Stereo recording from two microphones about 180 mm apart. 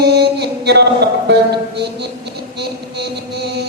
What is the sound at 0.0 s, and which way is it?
Music, 65° right (ahead or behind).